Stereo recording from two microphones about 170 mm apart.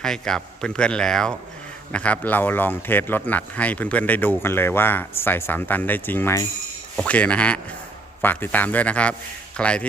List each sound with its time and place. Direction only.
0.0 s a man's voice: 5° left (ahead or behind)